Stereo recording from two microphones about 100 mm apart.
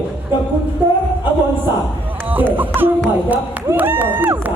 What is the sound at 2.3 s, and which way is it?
Speech, 20° right (ahead or behind).